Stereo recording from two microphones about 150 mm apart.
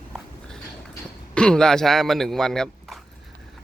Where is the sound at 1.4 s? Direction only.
5° left (ahead or behind).